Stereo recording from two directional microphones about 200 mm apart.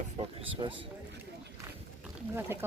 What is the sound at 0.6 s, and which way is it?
Speech, 20° right (ahead or behind).